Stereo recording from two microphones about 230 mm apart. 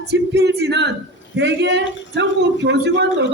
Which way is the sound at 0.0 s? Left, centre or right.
Right.